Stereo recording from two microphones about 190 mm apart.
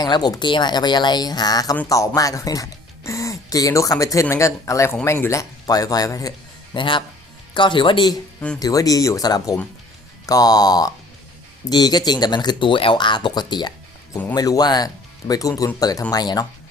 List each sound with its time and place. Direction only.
0.0 s speech: 20° left (ahead or behind)